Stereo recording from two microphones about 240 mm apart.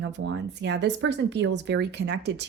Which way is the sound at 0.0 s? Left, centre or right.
Right.